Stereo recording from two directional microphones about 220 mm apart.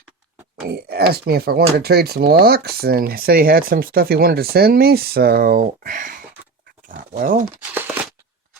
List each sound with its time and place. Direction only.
0.5 s speech: 45° right (ahead or behind)
6.8 s pig: 40° right (ahead or behind)
7.7 s a sound: 10° right (ahead or behind)